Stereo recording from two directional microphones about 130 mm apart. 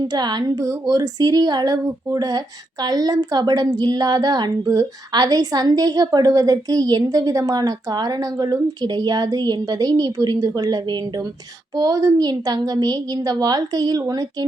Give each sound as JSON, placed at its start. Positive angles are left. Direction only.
{"t": 0.0, "sound": "speech", "side_deg": -35}